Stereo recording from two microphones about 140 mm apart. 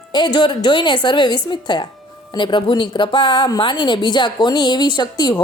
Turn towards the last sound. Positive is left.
turn(degrees=30)  # may be behind; listen again after turning